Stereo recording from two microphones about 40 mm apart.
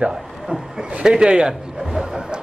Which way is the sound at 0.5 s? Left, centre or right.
Right.